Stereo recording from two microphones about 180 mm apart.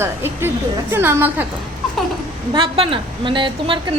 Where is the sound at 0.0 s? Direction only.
15° right (ahead or behind).